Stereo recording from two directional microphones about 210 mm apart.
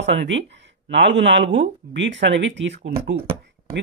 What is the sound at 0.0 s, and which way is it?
Speech, 55° right (ahead or behind).